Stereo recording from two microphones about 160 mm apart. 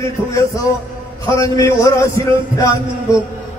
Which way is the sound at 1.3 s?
20° left (ahead or behind).